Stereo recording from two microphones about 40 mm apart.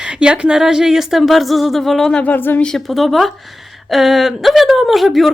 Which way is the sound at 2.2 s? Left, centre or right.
Left.